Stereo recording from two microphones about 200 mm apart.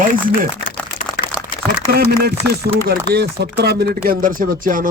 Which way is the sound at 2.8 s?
55° right (ahead or behind).